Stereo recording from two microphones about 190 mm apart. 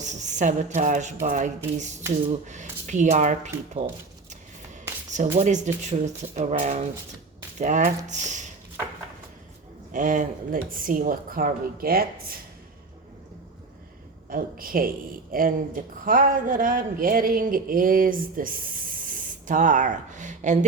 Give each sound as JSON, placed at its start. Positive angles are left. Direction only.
{"t": 0.0, "sound": "speech", "side_deg": -40}
{"t": 5.1, "sound": "speech", "side_deg": -40}
{"t": 9.9, "sound": "a woman's voice", "side_deg": -45}
{"t": 14.3, "sound": "a woman's voice", "side_deg": -50}